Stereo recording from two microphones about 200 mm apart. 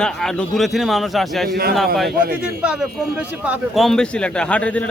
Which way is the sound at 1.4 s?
50° right (ahead or behind).